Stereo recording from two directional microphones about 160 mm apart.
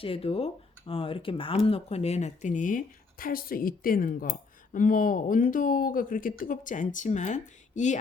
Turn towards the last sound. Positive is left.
turn(degrees=50)  # may be behind; listen again after turning